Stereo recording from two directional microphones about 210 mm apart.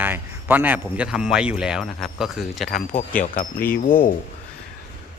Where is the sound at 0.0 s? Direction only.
10° right (ahead or behind).